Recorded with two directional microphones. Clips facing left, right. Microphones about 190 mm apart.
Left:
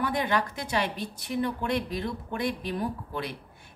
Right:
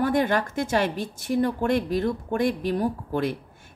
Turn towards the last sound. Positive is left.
turn(degrees=-45)  # may be behind; listen again after turning